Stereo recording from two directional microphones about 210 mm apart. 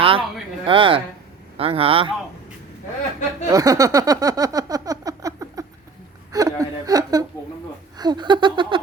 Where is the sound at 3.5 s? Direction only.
15° right (ahead or behind).